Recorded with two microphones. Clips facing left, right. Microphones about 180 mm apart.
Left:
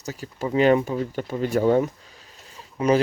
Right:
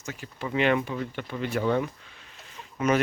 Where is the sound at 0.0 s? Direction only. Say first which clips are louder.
Left 6 dB; 40° left (ahead or behind).